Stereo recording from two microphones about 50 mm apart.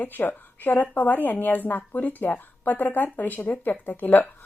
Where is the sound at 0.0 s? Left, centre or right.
Left.